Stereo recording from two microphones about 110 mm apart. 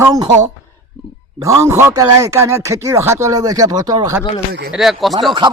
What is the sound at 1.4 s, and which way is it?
Speech, 30° right (ahead or behind).